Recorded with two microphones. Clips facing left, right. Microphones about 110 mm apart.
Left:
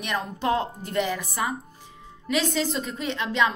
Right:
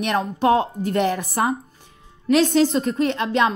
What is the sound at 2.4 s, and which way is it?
Speech, centre (ahead or behind).